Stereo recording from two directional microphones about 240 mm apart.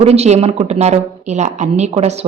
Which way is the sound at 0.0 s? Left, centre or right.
Right.